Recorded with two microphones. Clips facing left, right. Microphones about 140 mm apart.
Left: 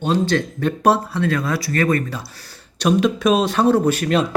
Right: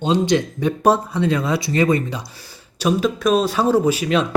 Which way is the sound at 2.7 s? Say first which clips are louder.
Left 2 dB; 5° right (ahead or behind).